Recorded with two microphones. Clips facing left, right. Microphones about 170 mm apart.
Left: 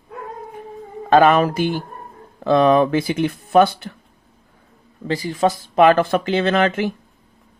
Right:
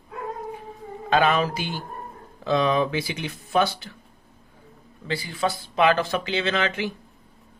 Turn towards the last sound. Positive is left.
turn(degrees=50)  # may be behind; listen again after turning